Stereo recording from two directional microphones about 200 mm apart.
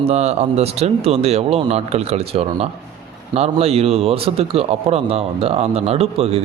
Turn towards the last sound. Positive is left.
turn(degrees=-30)  # may be behind; listen again after turning